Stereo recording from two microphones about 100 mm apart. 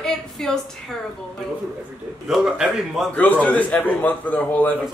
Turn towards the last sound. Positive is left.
turn(degrees=15)  # may be behind; listen again after turning